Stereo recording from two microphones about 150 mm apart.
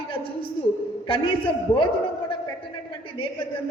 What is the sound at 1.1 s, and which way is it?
Speech, 35° left (ahead or behind).